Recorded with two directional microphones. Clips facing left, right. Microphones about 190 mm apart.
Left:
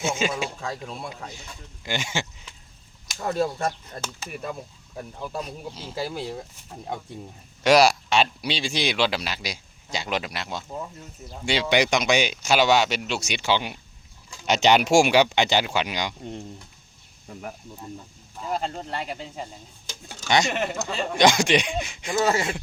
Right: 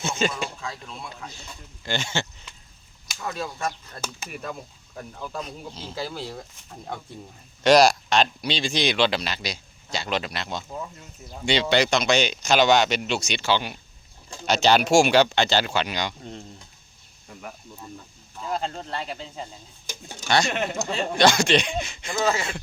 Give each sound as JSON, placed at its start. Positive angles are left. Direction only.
{"t": 0.0, "sound": "speech", "side_deg": 10}
{"t": 0.6, "sound": "speech", "side_deg": 40}
{"t": 1.3, "sound": "speech", "side_deg": 15}
{"t": 3.2, "sound": "speech", "side_deg": 40}
{"t": 3.7, "sound": "speech", "side_deg": 20}
{"t": 18.3, "sound": "speech", "side_deg": 10}
{"t": 19.9, "sound": "speech", "side_deg": -15}
{"t": 20.2, "sound": "speech", "side_deg": 20}
{"t": 20.5, "sound": "speech", "side_deg": 0}
{"t": 21.2, "sound": "speech", "side_deg": 15}